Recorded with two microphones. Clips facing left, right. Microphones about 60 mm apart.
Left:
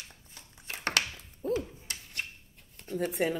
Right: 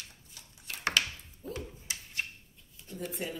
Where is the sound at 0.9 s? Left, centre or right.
Left.